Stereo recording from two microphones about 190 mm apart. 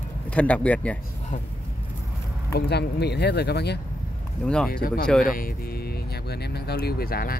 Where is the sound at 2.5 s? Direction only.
60° left (ahead or behind).